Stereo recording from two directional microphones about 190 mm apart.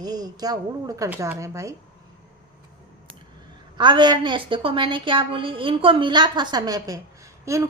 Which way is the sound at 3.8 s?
25° right (ahead or behind).